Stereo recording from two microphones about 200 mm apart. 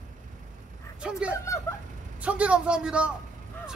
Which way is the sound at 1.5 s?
15° left (ahead or behind).